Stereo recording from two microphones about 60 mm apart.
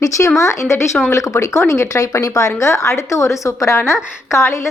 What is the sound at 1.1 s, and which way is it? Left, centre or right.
A woman's voice, left.